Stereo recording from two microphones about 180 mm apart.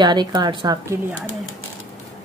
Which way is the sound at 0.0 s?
25° right (ahead or behind).